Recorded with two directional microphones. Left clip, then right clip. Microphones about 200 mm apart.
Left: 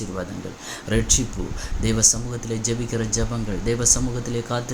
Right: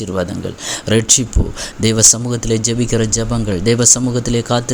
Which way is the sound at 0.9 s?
45° right (ahead or behind).